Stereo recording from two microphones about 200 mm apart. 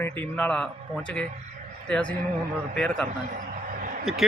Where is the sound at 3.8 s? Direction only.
45° right (ahead or behind).